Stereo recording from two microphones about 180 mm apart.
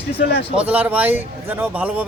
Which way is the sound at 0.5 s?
10° right (ahead or behind).